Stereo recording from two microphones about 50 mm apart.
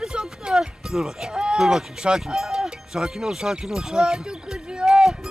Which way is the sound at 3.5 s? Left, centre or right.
Centre.